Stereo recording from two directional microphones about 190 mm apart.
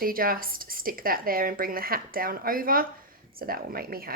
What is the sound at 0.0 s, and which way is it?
Speech, 50° right (ahead or behind).